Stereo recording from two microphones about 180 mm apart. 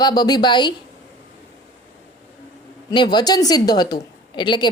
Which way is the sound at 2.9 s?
25° left (ahead or behind).